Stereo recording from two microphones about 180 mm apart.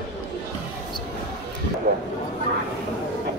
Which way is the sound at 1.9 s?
55° right (ahead or behind).